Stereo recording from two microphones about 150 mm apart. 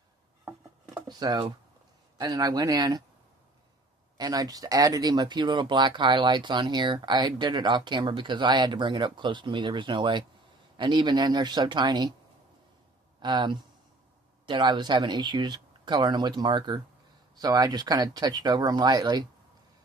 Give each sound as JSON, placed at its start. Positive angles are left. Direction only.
{"t": 1.0, "sound": "speech", "side_deg": -25}
{"t": 4.2, "sound": "speech", "side_deg": -25}
{"t": 13.2, "sound": "speech", "side_deg": -30}